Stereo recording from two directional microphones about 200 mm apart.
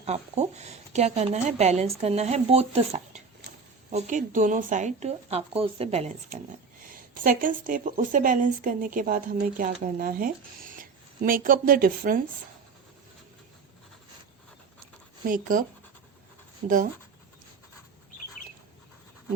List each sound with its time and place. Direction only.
0.0 s speech: 35° right (ahead or behind)
6.9 s a woman's voice: 45° right (ahead or behind)
15.3 s a woman's voice: 45° right (ahead or behind)
16.6 s a woman's voice: 45° right (ahead or behind)